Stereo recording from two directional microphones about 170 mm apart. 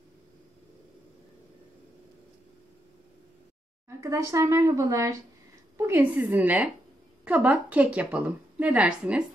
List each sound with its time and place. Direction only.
4.0 s a woman's voice: 20° right (ahead or behind)